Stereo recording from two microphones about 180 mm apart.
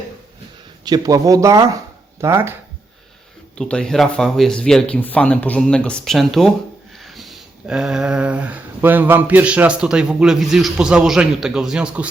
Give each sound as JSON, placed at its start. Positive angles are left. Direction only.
{"t": 0.9, "sound": "speech", "side_deg": -20}
{"t": 3.6, "sound": "speech", "side_deg": 5}